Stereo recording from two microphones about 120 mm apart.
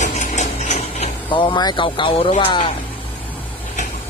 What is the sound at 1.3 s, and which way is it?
Speech, 40° left (ahead or behind).